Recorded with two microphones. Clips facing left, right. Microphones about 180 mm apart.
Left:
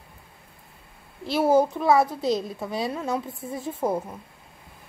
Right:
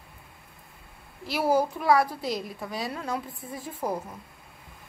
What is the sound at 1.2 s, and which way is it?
A woman's voice, 25° left (ahead or behind).